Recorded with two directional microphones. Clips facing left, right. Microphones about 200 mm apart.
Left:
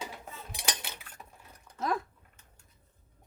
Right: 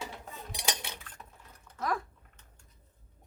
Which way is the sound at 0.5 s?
Centre (ahead or behind).